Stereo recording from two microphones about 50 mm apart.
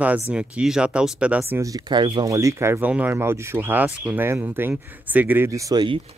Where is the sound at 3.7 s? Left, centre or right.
Right.